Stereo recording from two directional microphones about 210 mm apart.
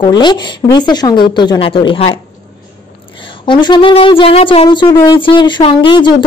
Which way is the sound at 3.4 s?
20° left (ahead or behind).